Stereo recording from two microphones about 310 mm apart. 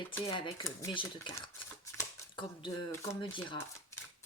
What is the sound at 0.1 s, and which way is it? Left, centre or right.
Speech, centre.